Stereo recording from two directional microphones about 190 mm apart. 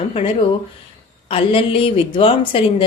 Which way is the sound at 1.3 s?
30° left (ahead or behind).